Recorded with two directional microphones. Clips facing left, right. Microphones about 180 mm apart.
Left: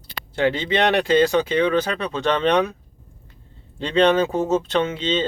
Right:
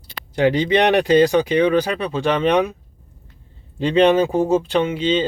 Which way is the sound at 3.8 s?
15° right (ahead or behind).